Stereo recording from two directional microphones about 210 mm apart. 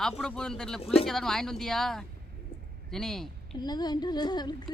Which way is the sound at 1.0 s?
Centre (ahead or behind).